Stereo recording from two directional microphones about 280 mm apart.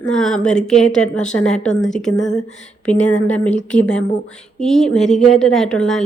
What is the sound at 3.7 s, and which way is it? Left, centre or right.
A woman's voice, centre.